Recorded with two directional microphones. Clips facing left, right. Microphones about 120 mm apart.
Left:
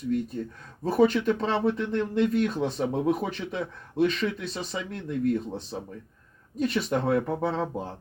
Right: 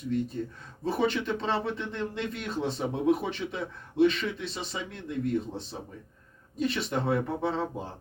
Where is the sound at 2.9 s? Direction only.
40° left (ahead or behind).